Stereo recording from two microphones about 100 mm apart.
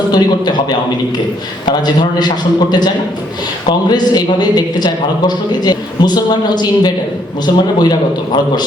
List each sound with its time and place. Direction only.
0.1 s a man's voice: 45° left (ahead or behind)